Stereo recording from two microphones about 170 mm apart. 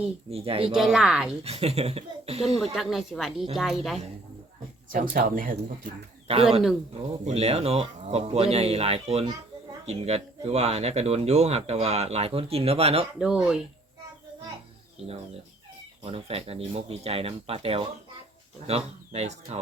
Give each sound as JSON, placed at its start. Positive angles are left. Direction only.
{"t": 0.3, "sound": "speech", "side_deg": -35}
{"t": 0.7, "sound": "speech", "side_deg": -5}
{"t": 1.5, "sound": "speech", "side_deg": -35}
{"t": 2.7, "sound": "speech", "side_deg": 0}
{"t": 4.9, "sound": "speech", "side_deg": -55}
{"t": 6.2, "sound": "speech", "side_deg": -35}
{"t": 13.1, "sound": "speech", "side_deg": -5}
{"t": 14.9, "sound": "speech", "side_deg": -35}